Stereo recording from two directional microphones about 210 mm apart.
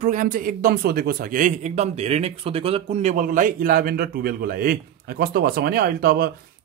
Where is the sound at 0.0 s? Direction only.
40° right (ahead or behind).